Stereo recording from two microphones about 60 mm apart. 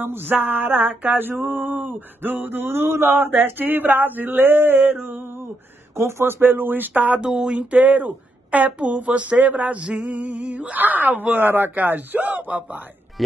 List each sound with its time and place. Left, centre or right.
0.0 s male singing: right
5.9 s male singing: right
7.2 s a sound: centre
7.5 s speech: right